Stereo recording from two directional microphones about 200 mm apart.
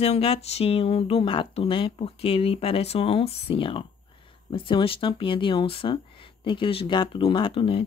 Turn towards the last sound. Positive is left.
turn(degrees=25)  # may be behind; listen again after turning